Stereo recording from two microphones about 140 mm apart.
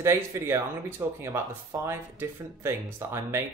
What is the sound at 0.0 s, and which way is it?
Speech, 20° right (ahead or behind).